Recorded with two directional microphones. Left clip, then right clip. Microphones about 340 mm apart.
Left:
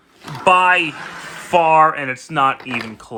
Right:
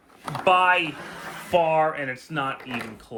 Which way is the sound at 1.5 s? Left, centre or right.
Left.